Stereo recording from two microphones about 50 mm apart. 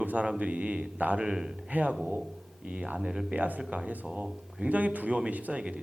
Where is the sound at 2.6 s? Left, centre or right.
Right.